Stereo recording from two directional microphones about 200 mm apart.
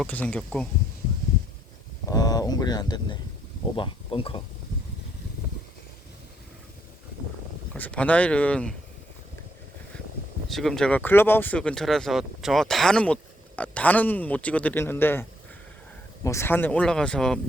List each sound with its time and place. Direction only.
0.0 s speech: 10° left (ahead or behind)
2.0 s speech: 20° left (ahead or behind)
7.8 s a man's voice: 5° left (ahead or behind)
10.5 s a man's voice: centre (ahead or behind)